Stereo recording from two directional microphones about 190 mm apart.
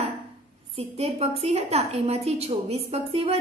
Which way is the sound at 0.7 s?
30° right (ahead or behind).